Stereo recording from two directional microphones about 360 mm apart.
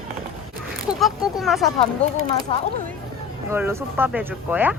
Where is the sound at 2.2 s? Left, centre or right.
Centre.